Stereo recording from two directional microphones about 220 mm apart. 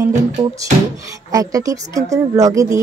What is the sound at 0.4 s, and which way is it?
A woman's voice, 20° right (ahead or behind).